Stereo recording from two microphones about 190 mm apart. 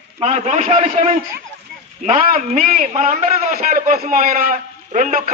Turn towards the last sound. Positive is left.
turn(degrees=-45)  # may be behind; listen again after turning